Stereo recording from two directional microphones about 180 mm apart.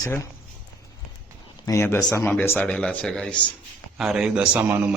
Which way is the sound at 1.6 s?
15° left (ahead or behind).